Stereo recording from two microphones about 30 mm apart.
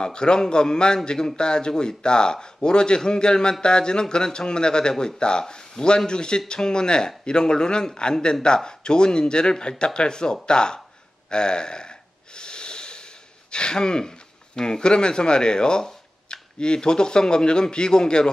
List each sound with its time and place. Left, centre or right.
0.0 s speech: left
11.2 s snort: left